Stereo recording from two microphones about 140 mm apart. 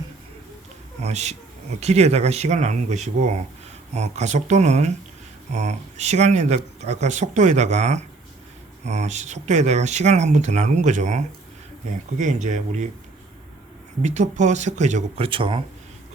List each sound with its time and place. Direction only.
1.0 s speech: 50° right (ahead or behind)
14.0 s speech: 55° right (ahead or behind)
15.2 s speech: 40° right (ahead or behind)